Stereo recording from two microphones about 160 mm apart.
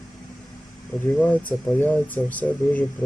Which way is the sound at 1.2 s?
10° left (ahead or behind).